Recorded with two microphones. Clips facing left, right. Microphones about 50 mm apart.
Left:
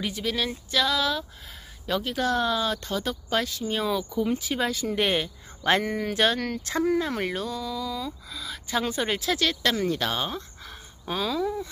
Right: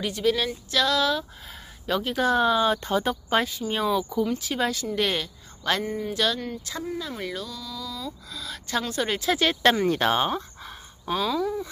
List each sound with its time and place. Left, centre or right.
0.0 s a sound: centre
1.9 s speech: centre
4.4 s a sound: centre
4.9 s speech: left
5.9 s speech: left
6.1 s speech: left
8.3 s speech: centre
9.8 s speech: right
11.1 s a sound: centre